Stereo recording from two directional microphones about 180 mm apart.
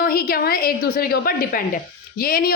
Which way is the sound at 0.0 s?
55° left (ahead or behind).